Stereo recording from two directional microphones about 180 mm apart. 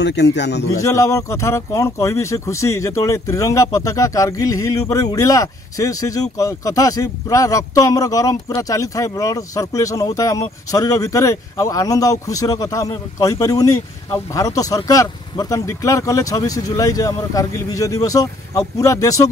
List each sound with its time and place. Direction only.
0.0 s a man's voice: 75° left (ahead or behind)
0.7 s speech: 15° left (ahead or behind)